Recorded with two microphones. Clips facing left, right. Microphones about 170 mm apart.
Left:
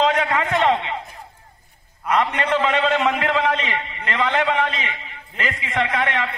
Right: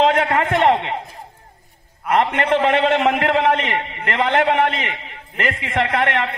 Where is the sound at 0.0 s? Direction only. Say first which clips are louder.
Right 3 dB; 55° right (ahead or behind).